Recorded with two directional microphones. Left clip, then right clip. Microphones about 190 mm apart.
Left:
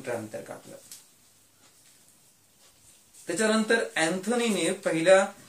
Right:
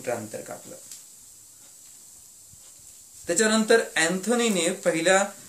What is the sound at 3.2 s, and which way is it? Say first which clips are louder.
Speech: right 3 dB; 55° right (ahead or behind).